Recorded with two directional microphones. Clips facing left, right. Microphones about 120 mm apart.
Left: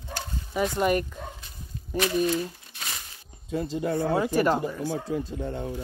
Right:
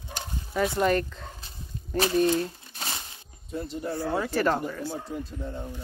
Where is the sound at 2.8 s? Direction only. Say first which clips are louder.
Right 3 dB; 30° right (ahead or behind).